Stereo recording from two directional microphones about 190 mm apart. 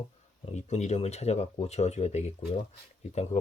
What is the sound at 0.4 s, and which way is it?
Speech, 35° left (ahead or behind).